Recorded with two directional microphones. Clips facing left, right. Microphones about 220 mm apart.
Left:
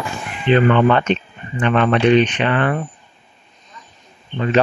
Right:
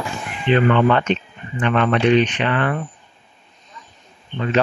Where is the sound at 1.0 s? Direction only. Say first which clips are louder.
Left 2 dB; 20° left (ahead or behind).